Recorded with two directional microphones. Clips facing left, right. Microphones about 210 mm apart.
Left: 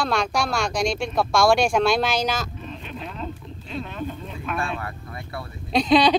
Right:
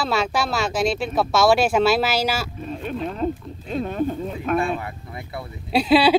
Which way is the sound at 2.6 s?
45° right (ahead or behind).